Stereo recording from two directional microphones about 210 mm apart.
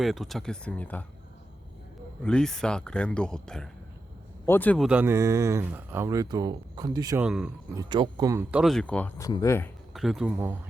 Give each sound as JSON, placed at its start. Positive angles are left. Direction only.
{"t": 0.0, "sound": "speech", "side_deg": 0}
{"t": 2.2, "sound": "speech", "side_deg": 5}
{"t": 4.9, "sound": "speech", "side_deg": -10}
{"t": 7.3, "sound": "speech", "side_deg": -5}
{"t": 7.8, "sound": "speech", "side_deg": -20}
{"t": 8.6, "sound": "speech", "side_deg": 5}
{"t": 9.9, "sound": "speech", "side_deg": 0}